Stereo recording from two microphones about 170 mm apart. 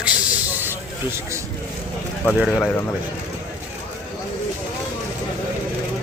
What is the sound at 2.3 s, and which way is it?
Speech, centre (ahead or behind).